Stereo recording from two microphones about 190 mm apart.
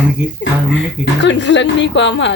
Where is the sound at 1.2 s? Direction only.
70° left (ahead or behind).